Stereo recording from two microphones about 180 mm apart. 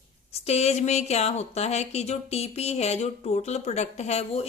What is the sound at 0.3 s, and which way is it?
Speech, 35° left (ahead or behind).